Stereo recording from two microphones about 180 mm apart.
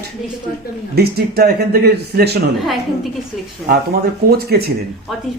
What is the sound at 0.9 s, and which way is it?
Speech, 60° right (ahead or behind).